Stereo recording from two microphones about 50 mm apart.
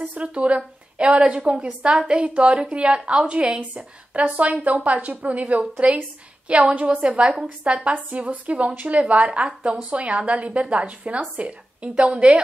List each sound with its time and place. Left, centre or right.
0.1 s a woman's voice: right
7.9 s a woman's voice: right